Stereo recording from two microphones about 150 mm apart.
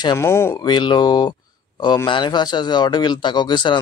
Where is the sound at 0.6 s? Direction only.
30° left (ahead or behind).